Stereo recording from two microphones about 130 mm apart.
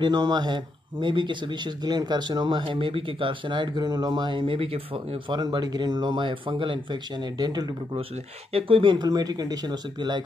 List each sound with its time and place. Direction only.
0.0 s speech: 35° right (ahead or behind)
5.4 s speech: 30° right (ahead or behind)
8.5 s speech: 45° right (ahead or behind)